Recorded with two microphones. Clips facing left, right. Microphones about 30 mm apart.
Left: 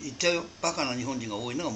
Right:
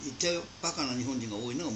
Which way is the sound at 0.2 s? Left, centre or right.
Centre.